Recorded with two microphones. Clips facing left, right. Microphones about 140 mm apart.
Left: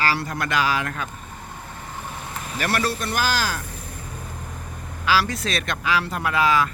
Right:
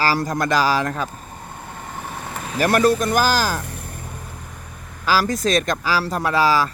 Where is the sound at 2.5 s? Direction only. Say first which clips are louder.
Right 8 dB; 45° right (ahead or behind).